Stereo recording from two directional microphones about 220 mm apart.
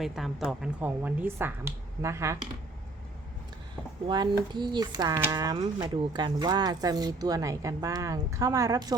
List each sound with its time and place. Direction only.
0.0 s speech: centre (ahead or behind)
4.0 s speech: 20° right (ahead or behind)